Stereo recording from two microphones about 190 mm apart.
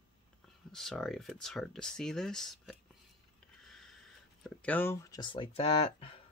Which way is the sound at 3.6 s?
Centre (ahead or behind).